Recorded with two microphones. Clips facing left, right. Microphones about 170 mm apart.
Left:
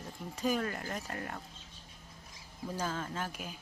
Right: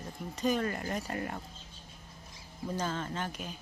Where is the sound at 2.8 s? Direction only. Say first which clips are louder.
Right 1 dB; 5° left (ahead or behind).